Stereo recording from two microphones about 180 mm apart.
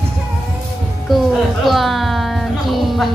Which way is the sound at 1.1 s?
Centre (ahead or behind).